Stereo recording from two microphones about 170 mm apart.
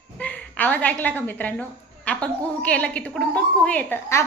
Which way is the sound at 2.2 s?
5° left (ahead or behind).